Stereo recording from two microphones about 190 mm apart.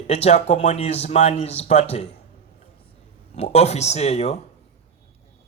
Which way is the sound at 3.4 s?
35° left (ahead or behind).